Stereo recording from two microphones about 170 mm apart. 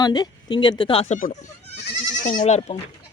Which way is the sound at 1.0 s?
45° left (ahead or behind).